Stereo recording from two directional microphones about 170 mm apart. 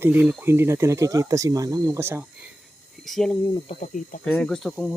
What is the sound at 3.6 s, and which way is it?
Speech, 45° left (ahead or behind).